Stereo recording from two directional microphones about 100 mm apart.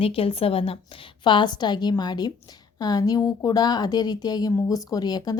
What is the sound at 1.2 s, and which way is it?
A woman's voice, 50° left (ahead or behind).